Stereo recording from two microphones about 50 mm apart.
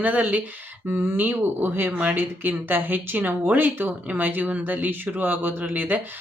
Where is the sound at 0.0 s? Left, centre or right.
Right.